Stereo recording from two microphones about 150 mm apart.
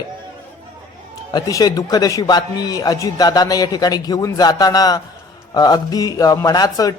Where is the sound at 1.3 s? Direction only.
25° left (ahead or behind).